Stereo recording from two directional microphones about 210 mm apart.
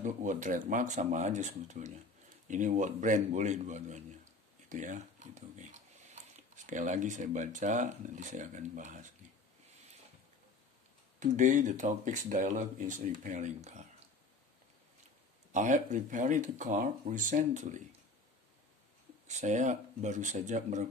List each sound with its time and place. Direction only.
0.0 s a man's voice: 35° right (ahead or behind)
11.1 s speech: 35° right (ahead or behind)
15.5 s speech: 35° right (ahead or behind)
19.2 s speech: 35° right (ahead or behind)